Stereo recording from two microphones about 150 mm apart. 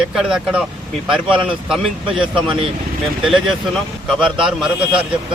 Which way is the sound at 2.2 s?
35° right (ahead or behind).